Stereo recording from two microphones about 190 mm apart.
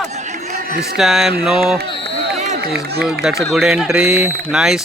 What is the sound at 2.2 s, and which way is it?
Run, 60° right (ahead or behind).